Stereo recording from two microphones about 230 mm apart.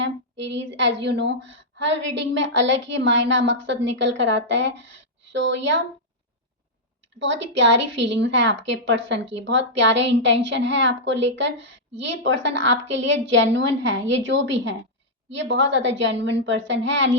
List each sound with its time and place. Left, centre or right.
0.0 s a woman's voice: right
7.2 s a woman's voice: right